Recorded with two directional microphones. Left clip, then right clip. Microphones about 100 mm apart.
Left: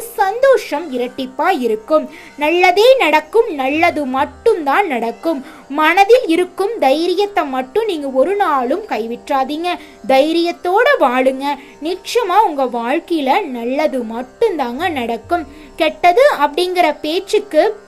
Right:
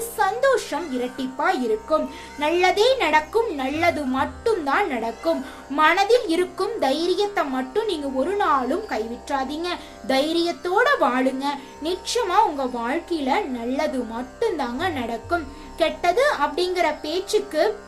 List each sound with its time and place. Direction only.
0.2 s a woman's voice: 60° left (ahead or behind)
11.8 s a woman's voice: 55° left (ahead or behind); by 17.7 s 75° left (ahead or behind)